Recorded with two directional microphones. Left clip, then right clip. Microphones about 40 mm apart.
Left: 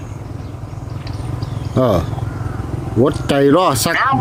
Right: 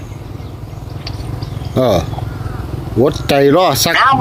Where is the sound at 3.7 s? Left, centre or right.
Left.